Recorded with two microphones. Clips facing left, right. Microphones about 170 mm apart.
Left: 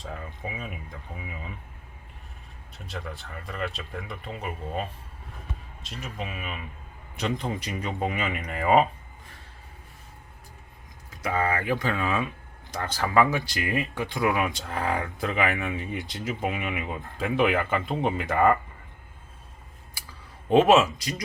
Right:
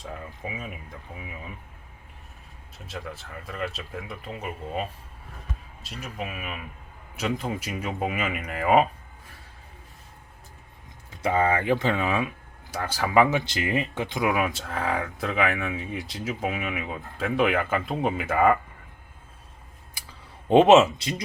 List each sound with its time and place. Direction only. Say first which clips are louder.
0.0 s speech: even; centre (ahead or behind)
2.7 s speech: even; centre (ahead or behind)
11.2 s speech: right 4 dB; 25° right (ahead or behind)
14.4 s speech: even; centre (ahead or behind)
20.5 s speech: right 3 dB; 25° right (ahead or behind)